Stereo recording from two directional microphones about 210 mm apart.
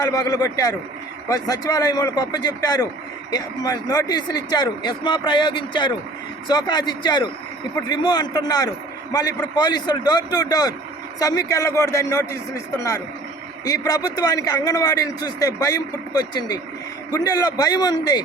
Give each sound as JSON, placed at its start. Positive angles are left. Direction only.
{"t": 0.0, "sound": "a man's voice", "side_deg": 15}